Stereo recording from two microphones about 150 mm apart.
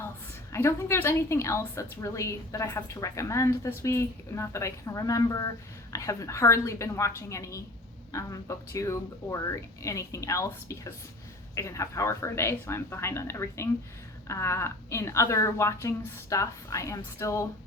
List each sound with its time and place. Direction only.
0.5 s a woman's voice: 20° left (ahead or behind)